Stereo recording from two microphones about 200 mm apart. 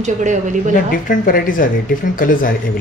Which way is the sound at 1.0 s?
45° left (ahead or behind).